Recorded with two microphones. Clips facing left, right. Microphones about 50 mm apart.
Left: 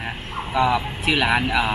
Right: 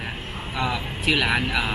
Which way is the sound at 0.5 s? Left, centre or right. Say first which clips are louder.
Left 7 dB; centre.